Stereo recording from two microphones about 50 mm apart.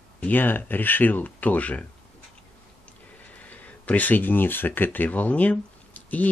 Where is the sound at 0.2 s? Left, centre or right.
Left.